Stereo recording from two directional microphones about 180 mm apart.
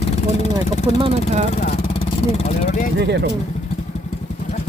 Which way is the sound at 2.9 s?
70° right (ahead or behind).